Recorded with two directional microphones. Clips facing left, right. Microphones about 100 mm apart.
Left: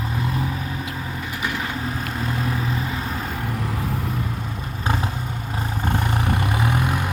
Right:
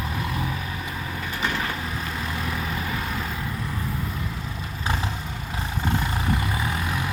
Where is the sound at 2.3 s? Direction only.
30° left (ahead or behind).